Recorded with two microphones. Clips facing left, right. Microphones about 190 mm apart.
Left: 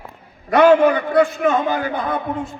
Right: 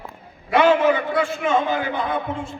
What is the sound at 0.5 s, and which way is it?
A man's voice, 50° left (ahead or behind).